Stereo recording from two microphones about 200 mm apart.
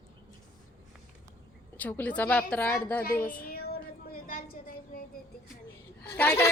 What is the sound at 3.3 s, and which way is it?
Child singing, 50° left (ahead or behind).